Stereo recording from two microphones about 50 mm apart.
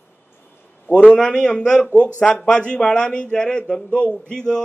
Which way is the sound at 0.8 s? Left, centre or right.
Left.